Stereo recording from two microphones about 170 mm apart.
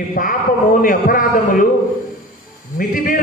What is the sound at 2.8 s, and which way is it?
Speech, 55° left (ahead or behind).